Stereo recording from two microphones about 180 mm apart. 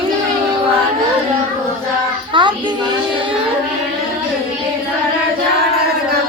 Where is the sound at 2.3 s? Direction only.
25° right (ahead or behind).